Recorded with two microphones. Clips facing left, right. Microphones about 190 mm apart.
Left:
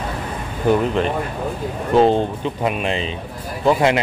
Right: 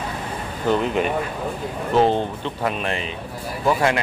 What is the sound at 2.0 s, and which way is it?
Speech, 15° left (ahead or behind).